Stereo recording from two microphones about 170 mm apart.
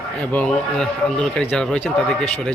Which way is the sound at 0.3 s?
5° left (ahead or behind).